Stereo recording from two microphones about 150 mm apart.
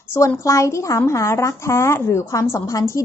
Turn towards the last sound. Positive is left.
turn(degrees=20)  # may be behind; listen again after turning